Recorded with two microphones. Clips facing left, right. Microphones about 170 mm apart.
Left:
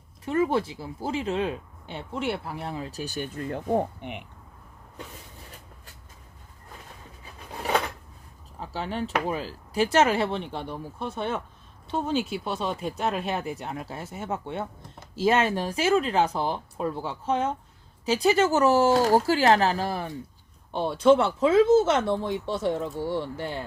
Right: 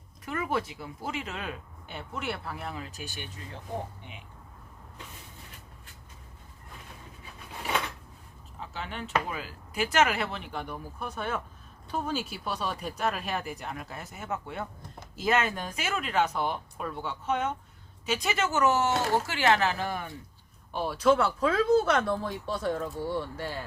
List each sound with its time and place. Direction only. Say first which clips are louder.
0.3 s speech: left 7 dB; 30° left (ahead or behind)
3.3 s speech: left 12 dB; 55° left (ahead or behind)
8.6 s speech: left 7 dB; 35° left (ahead or behind)